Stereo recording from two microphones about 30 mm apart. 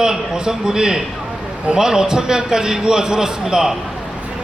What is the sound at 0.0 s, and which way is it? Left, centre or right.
A man's voice, right.